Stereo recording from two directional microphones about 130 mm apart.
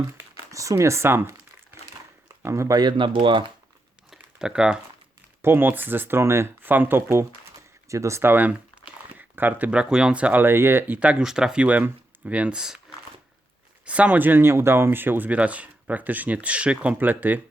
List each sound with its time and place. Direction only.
0.1 s speech: 20° right (ahead or behind)
2.4 s speech: 20° right (ahead or behind); by 3.5 s 40° right (ahead or behind)
4.1 s a sound: 5° right (ahead or behind)
5.4 s speech: 20° right (ahead or behind)
13.8 s speech: 10° right (ahead or behind)